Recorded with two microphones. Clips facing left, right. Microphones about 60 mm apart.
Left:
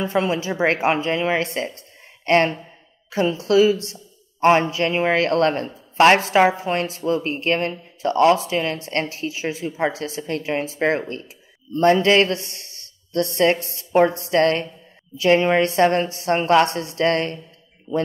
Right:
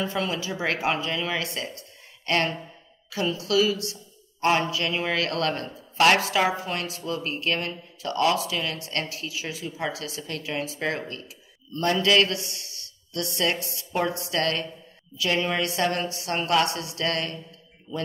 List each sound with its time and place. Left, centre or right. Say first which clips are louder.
0.0 s a woman's voice: left 6 dB; left